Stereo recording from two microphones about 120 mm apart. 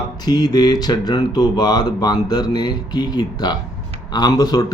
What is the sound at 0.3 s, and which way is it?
Speech, 35° left (ahead or behind).